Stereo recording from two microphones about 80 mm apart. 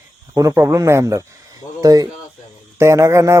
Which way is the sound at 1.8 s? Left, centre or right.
Right.